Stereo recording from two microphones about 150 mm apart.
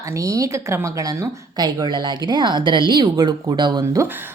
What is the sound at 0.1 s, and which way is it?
A woman's voice, 20° right (ahead or behind).